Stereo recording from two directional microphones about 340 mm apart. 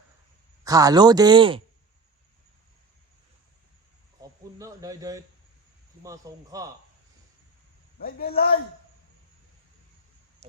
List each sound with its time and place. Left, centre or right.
0.6 s speech: centre
4.2 s speech: centre
8.0 s a man's voice: left